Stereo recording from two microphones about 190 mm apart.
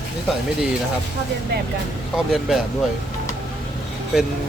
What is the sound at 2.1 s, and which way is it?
Speech, centre (ahead or behind).